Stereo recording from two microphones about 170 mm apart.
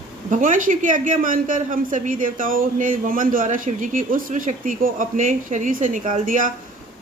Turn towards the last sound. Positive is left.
turn(degrees=-50)  # may be behind; listen again after turning